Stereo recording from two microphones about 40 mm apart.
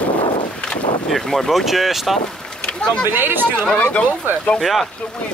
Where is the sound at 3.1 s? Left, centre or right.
Right.